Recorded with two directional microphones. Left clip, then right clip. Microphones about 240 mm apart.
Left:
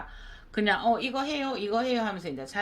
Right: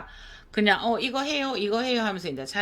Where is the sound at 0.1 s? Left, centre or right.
Right.